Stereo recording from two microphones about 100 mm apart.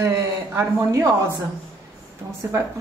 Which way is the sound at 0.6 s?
35° right (ahead or behind).